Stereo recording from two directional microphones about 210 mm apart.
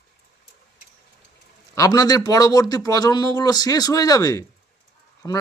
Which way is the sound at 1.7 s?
15° left (ahead or behind).